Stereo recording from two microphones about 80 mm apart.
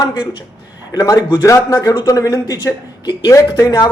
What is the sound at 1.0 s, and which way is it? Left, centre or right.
A man's voice, left.